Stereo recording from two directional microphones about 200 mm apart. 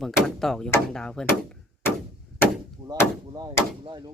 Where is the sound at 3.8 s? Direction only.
20° right (ahead or behind).